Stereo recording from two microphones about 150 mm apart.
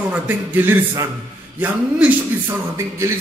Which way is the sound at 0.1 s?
10° right (ahead or behind).